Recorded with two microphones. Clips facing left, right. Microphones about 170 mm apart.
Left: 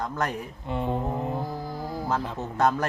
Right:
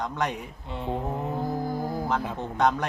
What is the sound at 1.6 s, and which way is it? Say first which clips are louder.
Music: right 4 dB; 50° right (ahead or behind).